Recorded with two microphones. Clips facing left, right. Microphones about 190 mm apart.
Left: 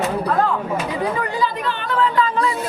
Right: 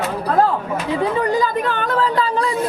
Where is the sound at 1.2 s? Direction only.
45° right (ahead or behind).